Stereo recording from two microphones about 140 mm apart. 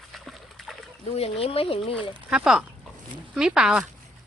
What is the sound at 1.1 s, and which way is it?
Speech, 45° left (ahead or behind).